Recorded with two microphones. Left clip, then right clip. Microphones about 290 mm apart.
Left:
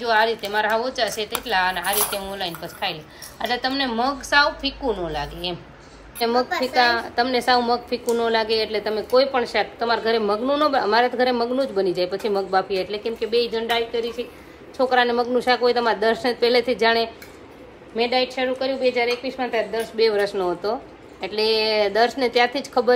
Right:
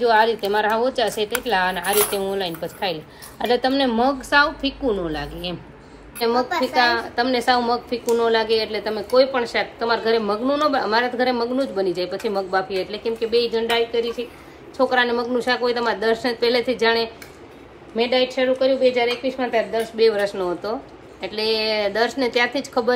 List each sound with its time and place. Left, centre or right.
0.0 s a woman's voice: centre